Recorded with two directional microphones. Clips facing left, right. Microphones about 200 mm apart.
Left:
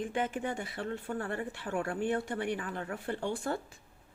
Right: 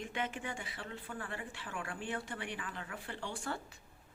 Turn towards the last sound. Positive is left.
turn(degrees=50)  # may be behind; listen again after turning